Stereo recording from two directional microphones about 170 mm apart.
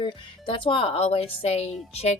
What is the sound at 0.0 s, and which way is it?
Speech, 30° left (ahead or behind).